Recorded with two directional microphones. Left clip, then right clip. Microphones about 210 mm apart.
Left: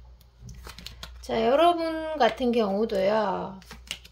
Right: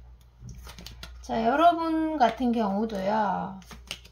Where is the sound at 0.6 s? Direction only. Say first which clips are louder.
Left 3 dB; 20° left (ahead or behind).